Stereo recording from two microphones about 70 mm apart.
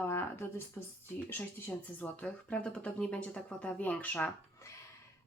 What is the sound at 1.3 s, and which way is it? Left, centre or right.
Speech, left.